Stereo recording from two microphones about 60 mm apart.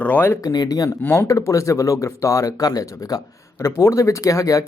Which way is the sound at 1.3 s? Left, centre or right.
Left.